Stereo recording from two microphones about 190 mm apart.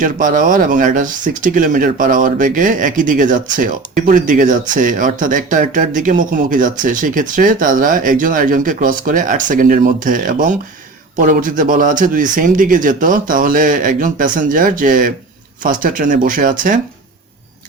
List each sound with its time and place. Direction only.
0.0 s speech: 45° right (ahead or behind)